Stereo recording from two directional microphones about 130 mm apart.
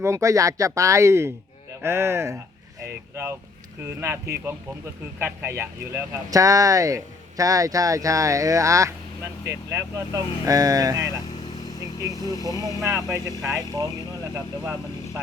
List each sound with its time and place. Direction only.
0.0 s speech: 25° right (ahead or behind)
11.8 s speech: 30° left (ahead or behind)
12.3 s speech: 30° right (ahead or behind)